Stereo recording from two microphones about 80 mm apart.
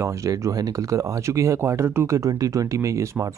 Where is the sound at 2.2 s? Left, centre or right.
Right.